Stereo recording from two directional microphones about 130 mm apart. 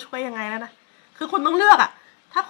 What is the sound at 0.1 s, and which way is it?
Speech, 15° right (ahead or behind).